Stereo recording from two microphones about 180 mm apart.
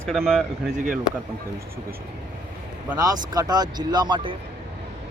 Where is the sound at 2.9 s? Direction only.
20° right (ahead or behind).